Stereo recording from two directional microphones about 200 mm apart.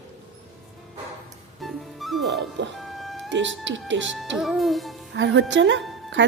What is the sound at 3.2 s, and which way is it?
Speech, 65° right (ahead or behind).